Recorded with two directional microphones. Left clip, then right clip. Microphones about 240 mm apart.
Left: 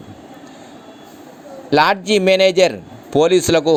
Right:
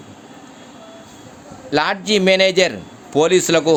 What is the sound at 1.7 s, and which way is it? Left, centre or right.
Speech, left.